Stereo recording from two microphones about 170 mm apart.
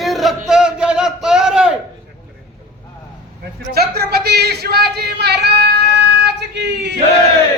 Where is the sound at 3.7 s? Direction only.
70° right (ahead or behind).